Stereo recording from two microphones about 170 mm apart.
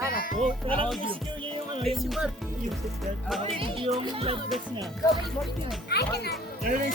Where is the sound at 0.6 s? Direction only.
30° right (ahead or behind).